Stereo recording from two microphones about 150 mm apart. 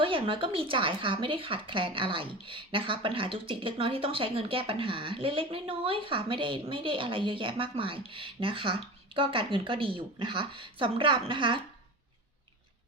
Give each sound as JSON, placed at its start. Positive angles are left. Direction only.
{"t": 0.0, "sound": "speech", "side_deg": -35}